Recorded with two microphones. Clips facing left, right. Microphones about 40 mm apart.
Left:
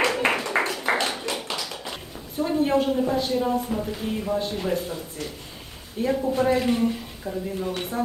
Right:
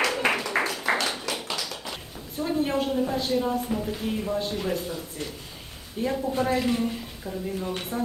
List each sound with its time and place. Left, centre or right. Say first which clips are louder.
0.2 s a sound: left 2 dB; left
1.4 s tap: left 1 dB; left
2.4 s a woman's voice: left 4 dB; centre
6.0 s a woman's voice: left 3 dB; centre